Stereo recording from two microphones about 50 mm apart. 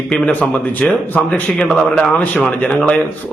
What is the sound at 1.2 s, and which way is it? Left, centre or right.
Speech, left.